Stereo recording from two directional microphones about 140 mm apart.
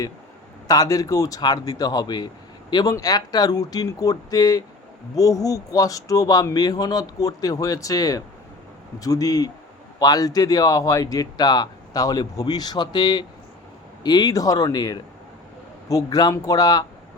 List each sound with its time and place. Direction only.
0.7 s speech: 25° left (ahead or behind)